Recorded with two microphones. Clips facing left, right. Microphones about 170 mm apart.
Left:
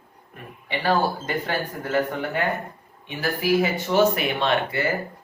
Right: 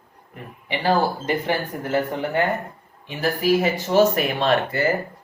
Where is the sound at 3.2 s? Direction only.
35° right (ahead or behind).